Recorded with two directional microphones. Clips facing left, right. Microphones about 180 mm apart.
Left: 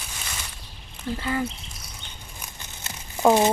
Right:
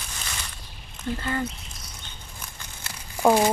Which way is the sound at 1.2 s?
5° left (ahead or behind).